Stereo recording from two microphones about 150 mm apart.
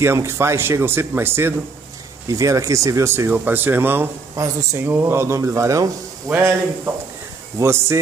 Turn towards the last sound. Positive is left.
turn(degrees=-20)  # may be behind; listen again after turning